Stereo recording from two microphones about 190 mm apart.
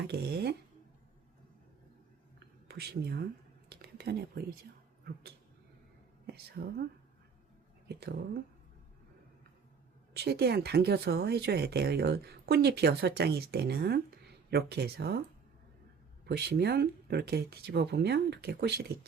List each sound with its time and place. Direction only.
0.1 s speech: 60° right (ahead or behind)
2.6 s speech: 60° right (ahead or behind)
3.7 s whispering: 55° right (ahead or behind)
6.2 s speech: 55° right (ahead or behind)
7.9 s speech: 55° right (ahead or behind)
10.2 s speech: 60° right (ahead or behind)
16.2 s speech: 60° right (ahead or behind)